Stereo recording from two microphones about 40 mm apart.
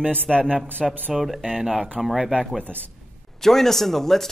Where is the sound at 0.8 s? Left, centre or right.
Centre.